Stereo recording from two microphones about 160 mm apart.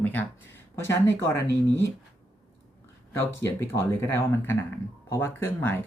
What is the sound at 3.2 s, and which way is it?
Speech, 15° left (ahead or behind).